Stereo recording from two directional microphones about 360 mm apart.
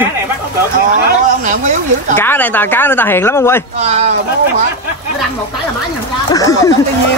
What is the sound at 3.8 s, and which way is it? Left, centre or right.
Speech, centre.